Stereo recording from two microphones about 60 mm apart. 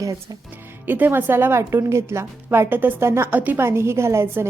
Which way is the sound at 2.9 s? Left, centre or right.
Right.